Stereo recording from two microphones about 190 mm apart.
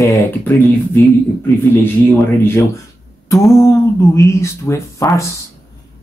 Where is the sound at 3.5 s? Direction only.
15° left (ahead or behind).